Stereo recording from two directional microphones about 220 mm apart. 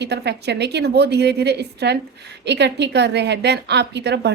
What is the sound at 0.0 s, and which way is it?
A woman's voice, 50° right (ahead or behind).